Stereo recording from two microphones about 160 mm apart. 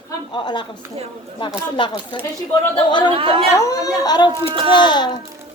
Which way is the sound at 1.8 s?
30° left (ahead or behind).